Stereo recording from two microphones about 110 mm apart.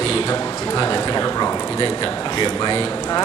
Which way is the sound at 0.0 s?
55° left (ahead or behind).